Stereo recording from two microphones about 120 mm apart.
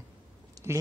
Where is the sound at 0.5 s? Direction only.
25° right (ahead or behind).